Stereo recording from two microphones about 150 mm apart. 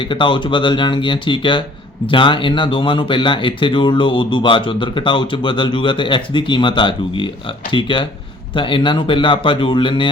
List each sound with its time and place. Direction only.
0.0 s speech: 35° left (ahead or behind)